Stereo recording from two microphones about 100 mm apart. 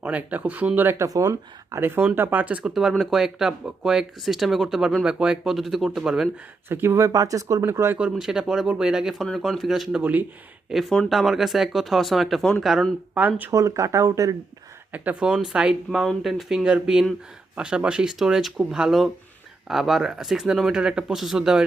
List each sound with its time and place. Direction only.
0.0 s speech: 15° right (ahead or behind)
1.0 s speech: 35° right (ahead or behind); by 6.2 s 5° right (ahead or behind)
6.7 s speech: 25° right (ahead or behind)
8.1 s speech: 5° right (ahead or behind)
10.0 s speech: 15° right (ahead or behind)
10.7 s speech: centre (ahead or behind)
13.1 s speech: 15° right (ahead or behind)
13.5 s speech: 35° right (ahead or behind)
14.9 s speech: 15° right (ahead or behind)